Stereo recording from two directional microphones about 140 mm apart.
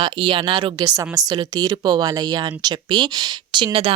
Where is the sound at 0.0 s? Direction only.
40° right (ahead or behind).